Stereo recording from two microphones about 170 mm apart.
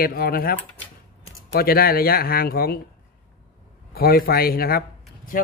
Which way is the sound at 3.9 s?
60° left (ahead or behind).